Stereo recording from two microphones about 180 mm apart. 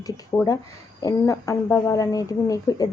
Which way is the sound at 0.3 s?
15° left (ahead or behind).